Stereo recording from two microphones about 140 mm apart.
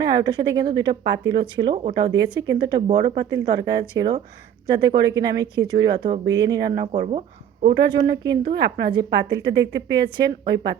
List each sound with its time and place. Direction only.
0.0 s speech: 25° right (ahead or behind)
1.7 s speech: 45° right (ahead or behind)
2.0 s speech: 30° right (ahead or behind)
7.0 s speech: 50° right (ahead or behind)
7.9 s speech: 30° right (ahead or behind)